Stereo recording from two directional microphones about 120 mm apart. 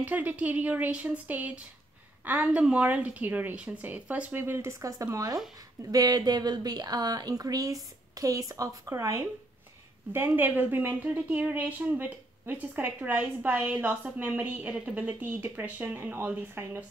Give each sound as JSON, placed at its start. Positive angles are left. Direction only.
{"t": 0.0, "sound": "a woman's voice", "side_deg": -15}